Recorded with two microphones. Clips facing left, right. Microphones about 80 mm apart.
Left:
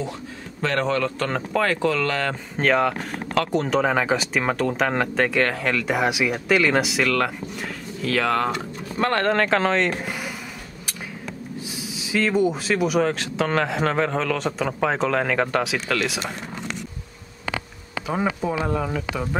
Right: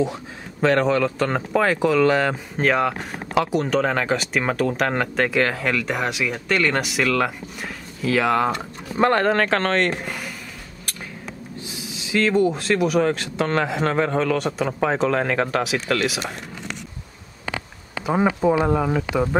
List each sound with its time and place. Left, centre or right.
0.6 s speech: centre
2.5 s speech: centre
3.8 s speech: centre
11.6 s speech: centre
18.0 s speech: centre